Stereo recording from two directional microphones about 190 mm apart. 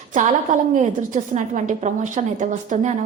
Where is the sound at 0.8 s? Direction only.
40° right (ahead or behind).